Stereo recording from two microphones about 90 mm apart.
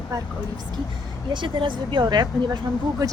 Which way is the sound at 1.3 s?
60° right (ahead or behind).